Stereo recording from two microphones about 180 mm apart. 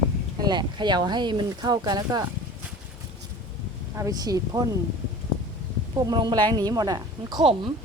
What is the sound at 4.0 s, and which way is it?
Speech, 20° right (ahead or behind).